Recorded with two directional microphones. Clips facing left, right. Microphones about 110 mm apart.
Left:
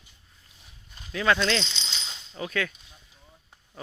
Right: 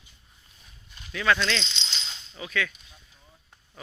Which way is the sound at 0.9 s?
30° left (ahead or behind).